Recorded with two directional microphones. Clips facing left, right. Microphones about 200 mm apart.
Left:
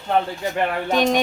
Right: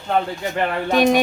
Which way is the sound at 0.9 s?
10° right (ahead or behind).